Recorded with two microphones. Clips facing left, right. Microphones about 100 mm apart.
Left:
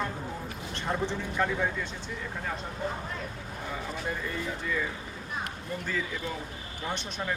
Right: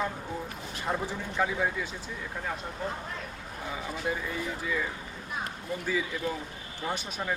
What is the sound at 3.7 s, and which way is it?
Speech, 5° right (ahead or behind).